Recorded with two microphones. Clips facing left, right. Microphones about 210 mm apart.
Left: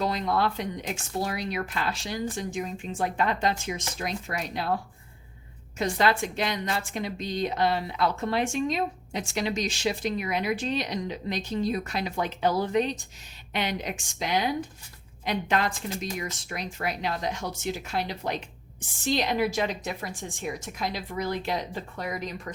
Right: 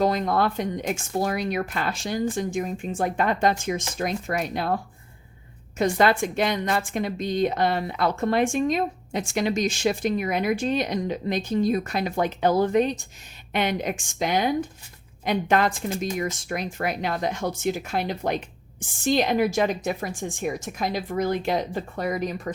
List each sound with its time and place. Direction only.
0.0 s a woman's voice: 50° right (ahead or behind)
5.7 s a woman's voice: 50° right (ahead or behind)